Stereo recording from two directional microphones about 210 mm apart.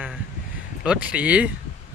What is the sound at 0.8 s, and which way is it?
Speech, 5° right (ahead or behind).